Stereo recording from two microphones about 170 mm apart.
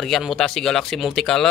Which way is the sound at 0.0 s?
Centre (ahead or behind).